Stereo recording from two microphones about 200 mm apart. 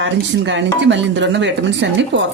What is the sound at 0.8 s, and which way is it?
Speech, 65° right (ahead or behind).